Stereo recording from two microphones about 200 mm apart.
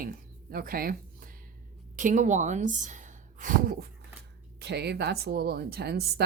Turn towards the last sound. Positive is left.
turn(degrees=-55)  # may be behind; listen again after turning